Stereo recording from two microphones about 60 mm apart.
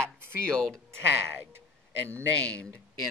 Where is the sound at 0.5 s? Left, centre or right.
Centre.